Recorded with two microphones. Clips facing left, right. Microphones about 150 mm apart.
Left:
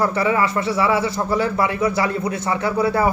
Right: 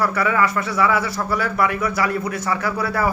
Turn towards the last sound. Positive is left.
turn(degrees=25)  # may be behind; listen again after turning